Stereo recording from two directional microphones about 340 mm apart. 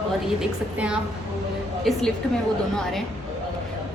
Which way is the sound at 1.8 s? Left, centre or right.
Centre.